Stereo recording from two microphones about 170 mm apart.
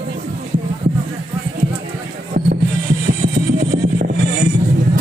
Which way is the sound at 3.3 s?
55° right (ahead or behind).